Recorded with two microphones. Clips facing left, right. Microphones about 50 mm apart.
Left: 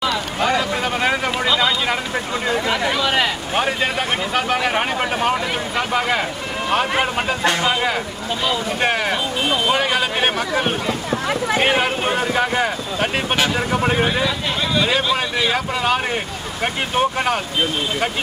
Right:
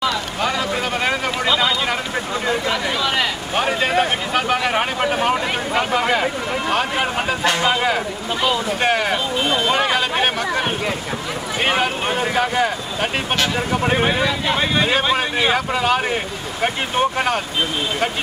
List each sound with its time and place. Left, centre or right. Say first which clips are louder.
0.0 s a sound: left 1 dB; centre
3.9 s speech: right 2 dB; centre
14.0 s speech: right 1 dB; centre
15.5 s speech: right 1 dB; centre